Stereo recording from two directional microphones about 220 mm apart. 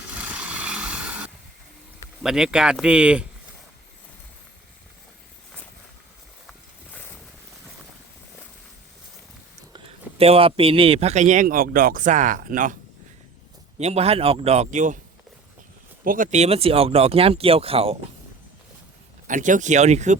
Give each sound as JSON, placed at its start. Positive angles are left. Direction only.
{"t": 0.1, "sound": "a sound", "side_deg": -5}
{"t": 2.2, "sound": "speech", "side_deg": -5}
{"t": 6.5, "sound": "a sound", "side_deg": 5}
{"t": 9.7, "sound": "a man's voice", "side_deg": -25}
{"t": 13.7, "sound": "speech", "side_deg": -30}
{"t": 16.0, "sound": "speech", "side_deg": -35}
{"t": 19.3, "sound": "a man's voice", "side_deg": -35}